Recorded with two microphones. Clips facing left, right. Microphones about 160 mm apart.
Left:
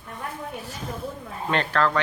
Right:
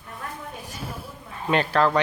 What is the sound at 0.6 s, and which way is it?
A woman's voice, 10° right (ahead or behind).